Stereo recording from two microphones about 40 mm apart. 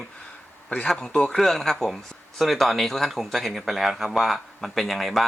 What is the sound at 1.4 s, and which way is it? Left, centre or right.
Speech, centre.